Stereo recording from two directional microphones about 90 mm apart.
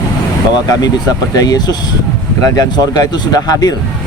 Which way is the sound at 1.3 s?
45° left (ahead or behind).